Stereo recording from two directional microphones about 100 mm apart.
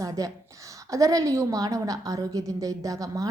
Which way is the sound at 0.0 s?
35° right (ahead or behind).